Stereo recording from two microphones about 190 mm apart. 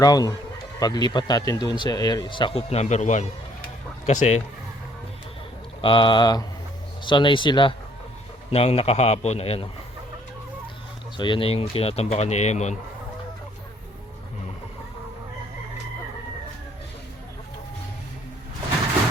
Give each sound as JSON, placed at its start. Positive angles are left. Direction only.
{"t": 0.0, "sound": "speech", "side_deg": 20}
{"t": 5.8, "sound": "speech", "side_deg": 25}
{"t": 11.2, "sound": "speech", "side_deg": 25}